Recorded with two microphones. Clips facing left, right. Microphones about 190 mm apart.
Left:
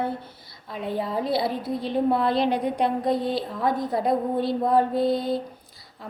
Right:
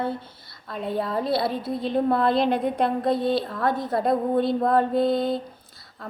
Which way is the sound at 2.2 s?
50° right (ahead or behind).